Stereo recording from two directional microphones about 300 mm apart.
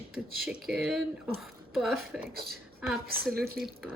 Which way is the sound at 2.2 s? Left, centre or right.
Right.